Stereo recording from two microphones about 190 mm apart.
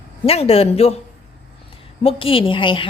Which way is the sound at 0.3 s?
30° left (ahead or behind).